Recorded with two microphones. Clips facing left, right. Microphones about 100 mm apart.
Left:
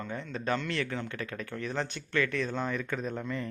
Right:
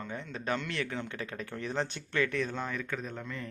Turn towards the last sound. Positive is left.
turn(degrees=5)  # may be behind; listen again after turning